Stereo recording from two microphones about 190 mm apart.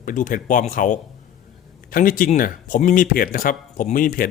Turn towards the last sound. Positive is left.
turn(degrees=45)  # may be behind; listen again after turning